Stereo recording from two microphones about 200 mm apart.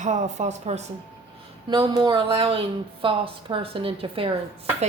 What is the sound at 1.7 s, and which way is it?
A woman's voice, 20° right (ahead or behind).